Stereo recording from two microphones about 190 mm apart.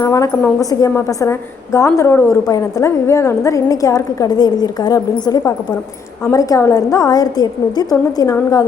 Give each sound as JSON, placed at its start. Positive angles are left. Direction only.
{"t": 0.0, "sound": "a woman's voice", "side_deg": 15}